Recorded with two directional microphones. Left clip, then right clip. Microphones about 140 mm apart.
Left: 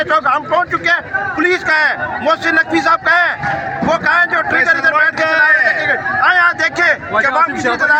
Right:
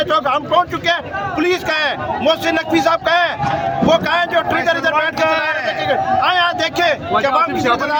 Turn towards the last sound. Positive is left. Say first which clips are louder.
# left 2 dB
turn(degrees=-65)  # may be behind; listen again after turning